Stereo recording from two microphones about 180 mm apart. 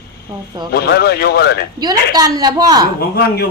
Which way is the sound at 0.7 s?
65° left (ahead or behind).